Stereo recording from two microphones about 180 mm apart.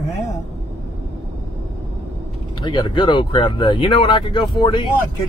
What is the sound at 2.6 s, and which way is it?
Speech, 25° left (ahead or behind).